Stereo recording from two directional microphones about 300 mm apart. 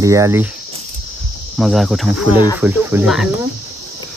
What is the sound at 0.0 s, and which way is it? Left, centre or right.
Speech, centre.